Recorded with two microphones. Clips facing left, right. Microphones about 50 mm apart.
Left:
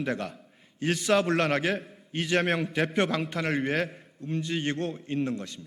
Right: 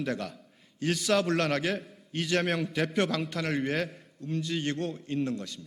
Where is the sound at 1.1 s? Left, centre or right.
Left.